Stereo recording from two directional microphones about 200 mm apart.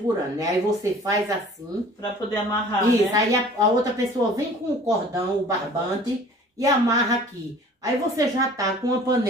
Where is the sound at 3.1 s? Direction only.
15° right (ahead or behind).